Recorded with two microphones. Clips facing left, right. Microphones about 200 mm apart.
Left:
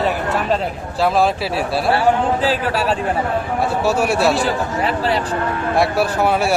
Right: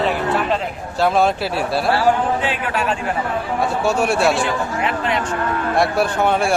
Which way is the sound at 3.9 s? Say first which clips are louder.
Even; centre (ahead or behind).